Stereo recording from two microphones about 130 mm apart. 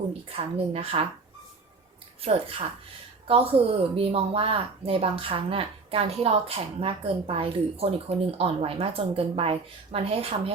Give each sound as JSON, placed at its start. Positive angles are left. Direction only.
{"t": 0.1, "sound": "speech", "side_deg": -50}
{"t": 2.2, "sound": "a woman's voice", "side_deg": -45}